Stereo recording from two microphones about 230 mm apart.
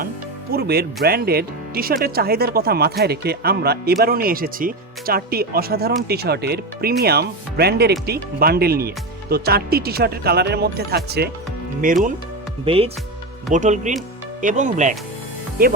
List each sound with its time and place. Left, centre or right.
0.5 s speech: right
12.6 s speech: right